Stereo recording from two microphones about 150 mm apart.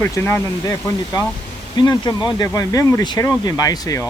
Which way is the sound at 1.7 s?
30° left (ahead or behind).